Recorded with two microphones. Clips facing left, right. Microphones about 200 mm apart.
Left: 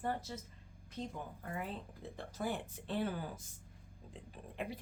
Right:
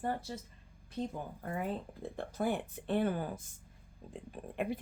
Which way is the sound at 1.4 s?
50° right (ahead or behind).